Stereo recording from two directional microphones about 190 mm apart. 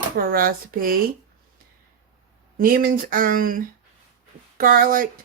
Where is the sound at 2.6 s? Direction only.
50° right (ahead or behind).